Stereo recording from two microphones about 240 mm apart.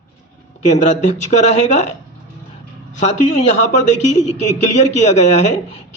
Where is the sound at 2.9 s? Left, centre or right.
Left.